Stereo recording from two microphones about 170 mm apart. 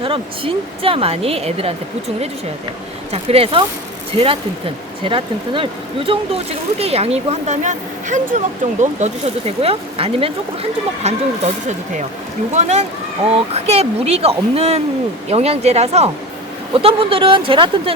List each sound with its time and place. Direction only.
0.0 s speech: 30° right (ahead or behind)
3.1 s speech: 35° right (ahead or behind)
5.0 s speech: 30° right (ahead or behind)
12.5 s speech: 40° right (ahead or behind)